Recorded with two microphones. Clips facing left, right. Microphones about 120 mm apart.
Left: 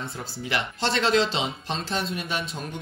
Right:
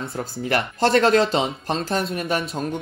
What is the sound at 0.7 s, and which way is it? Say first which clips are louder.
Speech: right 6 dB; 50° right (ahead or behind).